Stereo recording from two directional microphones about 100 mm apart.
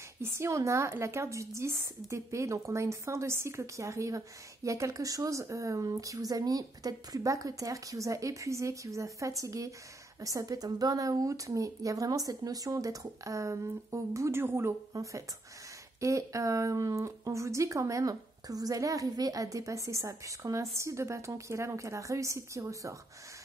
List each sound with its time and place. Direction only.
0.2 s a woman's voice: 25° right (ahead or behind)